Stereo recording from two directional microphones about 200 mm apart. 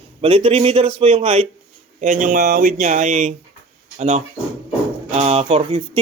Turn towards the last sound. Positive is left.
turn(degrees=-30)  # may be behind; listen again after turning